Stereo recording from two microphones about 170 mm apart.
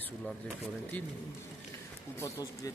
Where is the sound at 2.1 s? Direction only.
20° left (ahead or behind).